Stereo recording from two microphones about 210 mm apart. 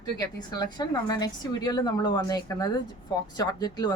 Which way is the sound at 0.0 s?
20° left (ahead or behind).